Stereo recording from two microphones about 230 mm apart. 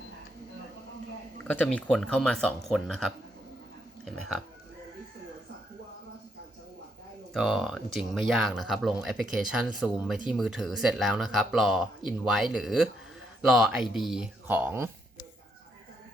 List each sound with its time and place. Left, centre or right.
1.5 s speech: centre
7.3 s speech: centre